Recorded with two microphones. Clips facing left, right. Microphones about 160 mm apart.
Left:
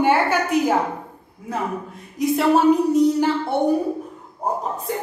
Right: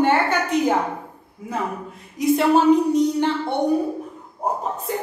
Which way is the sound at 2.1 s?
Centre (ahead or behind).